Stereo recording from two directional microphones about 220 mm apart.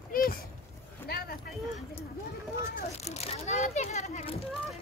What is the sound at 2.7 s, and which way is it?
Children playing, 30° left (ahead or behind).